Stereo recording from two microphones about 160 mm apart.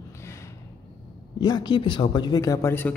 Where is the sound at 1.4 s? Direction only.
25° left (ahead or behind).